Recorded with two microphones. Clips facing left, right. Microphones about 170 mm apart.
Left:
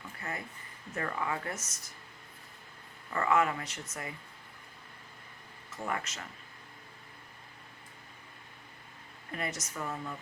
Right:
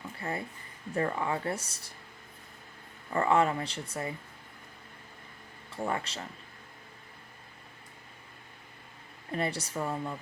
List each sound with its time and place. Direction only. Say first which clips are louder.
0.2 s speech: right 5 dB; 30° right (ahead or behind)
3.1 s speech: right 3 dB; 30° right (ahead or behind)
5.7 s speech: right 4 dB; 30° right (ahead or behind)
9.3 s speech: right 6 dB; 30° right (ahead or behind)